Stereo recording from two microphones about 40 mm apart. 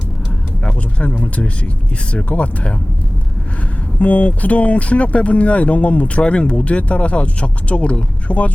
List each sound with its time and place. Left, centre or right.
1.0 s speech: left
4.0 s speech: left